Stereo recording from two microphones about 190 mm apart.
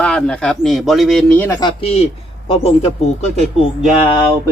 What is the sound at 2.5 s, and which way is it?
Speech, 35° left (ahead or behind).